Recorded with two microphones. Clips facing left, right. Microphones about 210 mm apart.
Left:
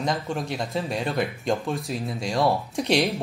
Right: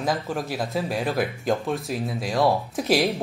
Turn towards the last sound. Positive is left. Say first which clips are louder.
# right 1 dB
turn(degrees=0)  # may be behind; listen again after turning